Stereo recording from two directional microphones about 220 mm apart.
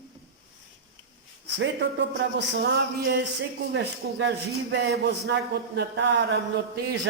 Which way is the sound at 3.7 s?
55° right (ahead or behind).